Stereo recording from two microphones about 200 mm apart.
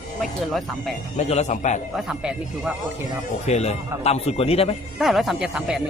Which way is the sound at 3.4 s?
35° left (ahead or behind).